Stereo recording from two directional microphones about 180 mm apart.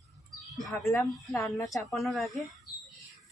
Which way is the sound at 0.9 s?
15° left (ahead or behind).